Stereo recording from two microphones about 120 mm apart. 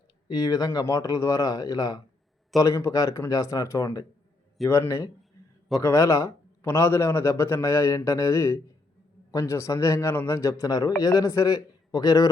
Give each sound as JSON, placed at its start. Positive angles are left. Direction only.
{"t": 0.3, "sound": "a man's voice", "side_deg": 35}